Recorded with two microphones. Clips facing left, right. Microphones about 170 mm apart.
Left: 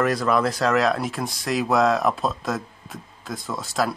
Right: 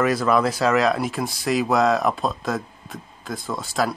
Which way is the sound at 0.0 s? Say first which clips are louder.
Right 1 dB; centre (ahead or behind).